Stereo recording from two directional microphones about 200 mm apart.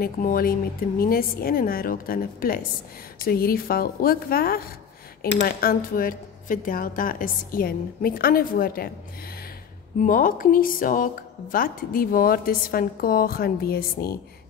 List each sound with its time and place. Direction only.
0.0 s speech: 45° left (ahead or behind)
9.9 s speech: 45° left (ahead or behind)